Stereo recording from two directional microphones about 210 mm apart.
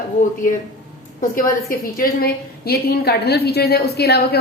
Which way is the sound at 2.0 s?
45° left (ahead or behind).